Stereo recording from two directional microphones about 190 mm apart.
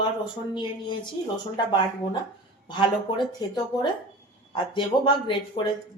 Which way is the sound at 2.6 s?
25° left (ahead or behind).